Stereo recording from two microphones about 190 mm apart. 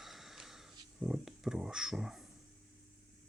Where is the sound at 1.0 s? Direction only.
5° right (ahead or behind).